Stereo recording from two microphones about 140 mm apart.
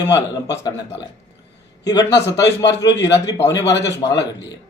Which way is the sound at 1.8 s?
30° left (ahead or behind).